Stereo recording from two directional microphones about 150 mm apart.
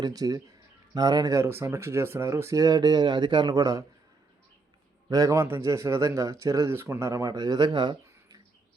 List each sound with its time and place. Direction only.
0.0 s a man's voice: 25° right (ahead or behind)
5.0 s a man's voice: 20° right (ahead or behind)